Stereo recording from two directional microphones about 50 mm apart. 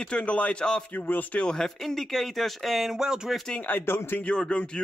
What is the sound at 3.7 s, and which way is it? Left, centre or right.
Speech, left.